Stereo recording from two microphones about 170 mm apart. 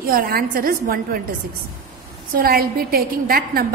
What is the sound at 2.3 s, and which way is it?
A woman's voice, 60° right (ahead or behind).